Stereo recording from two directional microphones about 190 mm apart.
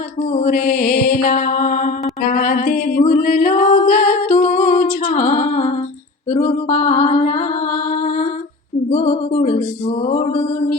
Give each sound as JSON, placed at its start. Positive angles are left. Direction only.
{"t": 0.2, "sound": "mantra", "side_deg": 40}
{"t": 2.3, "sound": "singing", "side_deg": 45}
{"t": 6.3, "sound": "music", "side_deg": 40}